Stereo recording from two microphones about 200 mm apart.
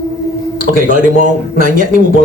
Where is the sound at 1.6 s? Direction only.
40° right (ahead or behind).